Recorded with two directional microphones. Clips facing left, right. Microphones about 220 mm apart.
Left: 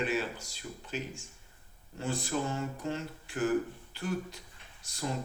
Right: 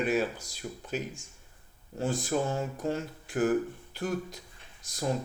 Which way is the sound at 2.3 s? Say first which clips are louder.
Right 4 dB; 35° right (ahead or behind).